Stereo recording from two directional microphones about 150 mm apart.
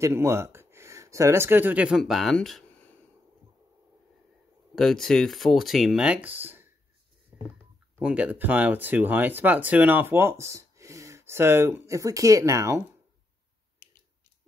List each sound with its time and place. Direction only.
0.0 s speech: 20° right (ahead or behind); by 2.6 s centre (ahead or behind)
4.7 s speech: centre (ahead or behind); by 6.7 s 15° right (ahead or behind)
8.0 s speech: 10° right (ahead or behind)